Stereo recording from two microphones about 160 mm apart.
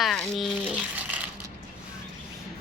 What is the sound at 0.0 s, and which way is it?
Speech, centre (ahead or behind).